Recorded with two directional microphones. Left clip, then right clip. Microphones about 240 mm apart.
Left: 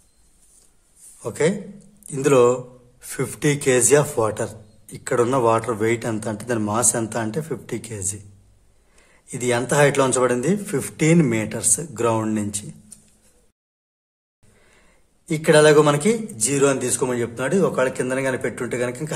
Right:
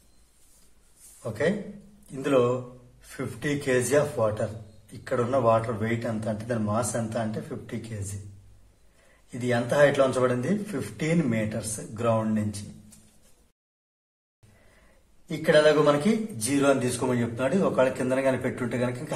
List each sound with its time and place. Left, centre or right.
1.2 s a man's voice: left
9.4 s a man's voice: left
15.2 s a man's voice: left